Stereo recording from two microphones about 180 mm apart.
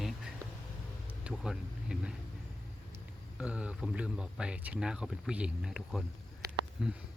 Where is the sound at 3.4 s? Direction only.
5° right (ahead or behind).